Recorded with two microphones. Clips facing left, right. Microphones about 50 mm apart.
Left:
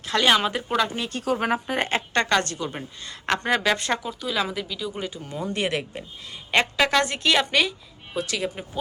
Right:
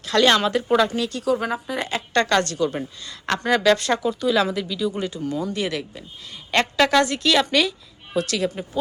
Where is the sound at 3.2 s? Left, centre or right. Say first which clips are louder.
Right 4 dB; centre.